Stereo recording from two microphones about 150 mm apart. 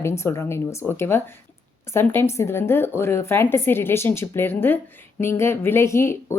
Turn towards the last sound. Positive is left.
turn(degrees=20)  # may be behind; listen again after turning